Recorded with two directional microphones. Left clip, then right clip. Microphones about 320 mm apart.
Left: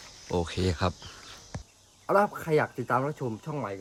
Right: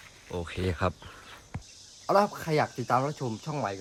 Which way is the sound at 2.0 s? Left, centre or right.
Centre.